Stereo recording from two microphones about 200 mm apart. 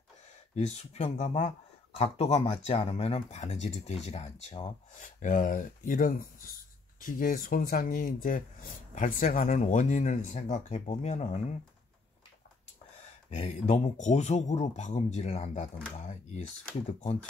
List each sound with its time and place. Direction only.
0.6 s speech: 30° left (ahead or behind)
13.3 s speech: 35° left (ahead or behind)